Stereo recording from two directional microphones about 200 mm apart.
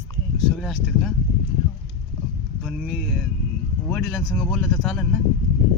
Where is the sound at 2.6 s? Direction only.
Centre (ahead or behind).